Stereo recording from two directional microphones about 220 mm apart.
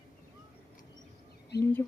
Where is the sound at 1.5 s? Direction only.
50° left (ahead or behind).